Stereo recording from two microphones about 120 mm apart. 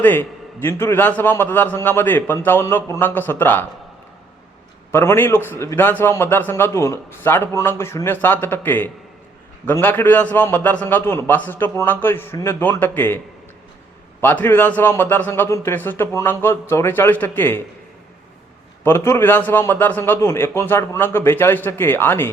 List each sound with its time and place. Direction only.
0.0 s a man's voice: 15° left (ahead or behind)
4.9 s a man's voice: 20° left (ahead or behind)
14.2 s a man's voice: 20° left (ahead or behind)
18.8 s a man's voice: 20° left (ahead or behind)